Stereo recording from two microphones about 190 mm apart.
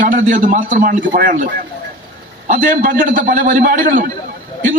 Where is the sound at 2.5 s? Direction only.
45° right (ahead or behind).